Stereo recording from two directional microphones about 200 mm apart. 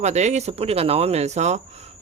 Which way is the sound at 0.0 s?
35° right (ahead or behind).